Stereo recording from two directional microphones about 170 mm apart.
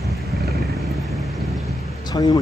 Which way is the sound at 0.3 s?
Centre (ahead or behind).